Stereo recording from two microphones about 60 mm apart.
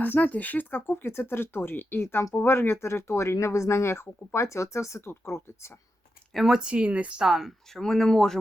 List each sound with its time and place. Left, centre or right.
0.0 s speech: left
6.3 s speech: centre
7.3 s speech: centre
7.7 s speech: centre